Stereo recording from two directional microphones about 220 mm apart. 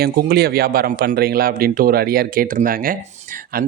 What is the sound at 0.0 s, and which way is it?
A man's voice, 45° right (ahead or behind).